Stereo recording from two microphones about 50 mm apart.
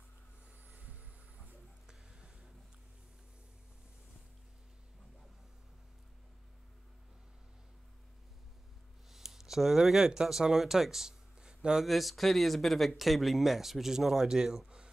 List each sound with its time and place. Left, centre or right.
0.7 s vehicle: right
1.9 s a sound: centre
9.1 s speech: centre
11.8 s speech: centre